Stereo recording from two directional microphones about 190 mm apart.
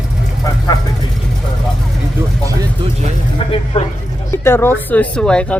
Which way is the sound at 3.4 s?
30° left (ahead or behind).